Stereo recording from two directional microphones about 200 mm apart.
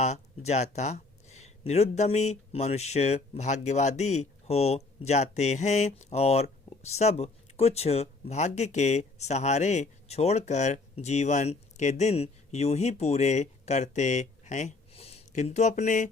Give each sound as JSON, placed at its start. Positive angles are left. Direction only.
{"t": 0.0, "sound": "speech", "side_deg": 35}